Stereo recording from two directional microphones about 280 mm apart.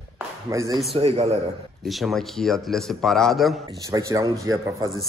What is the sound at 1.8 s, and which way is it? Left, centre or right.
A man's voice, centre.